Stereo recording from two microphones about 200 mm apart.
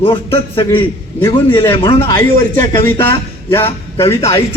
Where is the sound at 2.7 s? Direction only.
10° left (ahead or behind).